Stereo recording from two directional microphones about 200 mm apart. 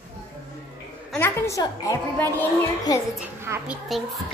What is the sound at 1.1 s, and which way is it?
A woman's voice, 10° left (ahead or behind).